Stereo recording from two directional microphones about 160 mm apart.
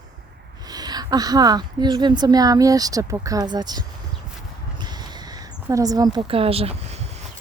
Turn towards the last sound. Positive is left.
turn(degrees=-45)  # may be behind; listen again after turning